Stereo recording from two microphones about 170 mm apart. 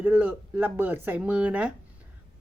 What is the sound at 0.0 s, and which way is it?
A woman's voice, 10° right (ahead or behind).